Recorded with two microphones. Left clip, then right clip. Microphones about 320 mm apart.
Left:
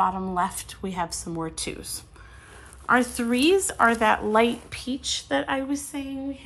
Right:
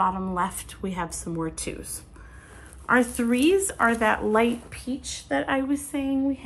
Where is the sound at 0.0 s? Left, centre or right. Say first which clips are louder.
Left 1 dB; centre.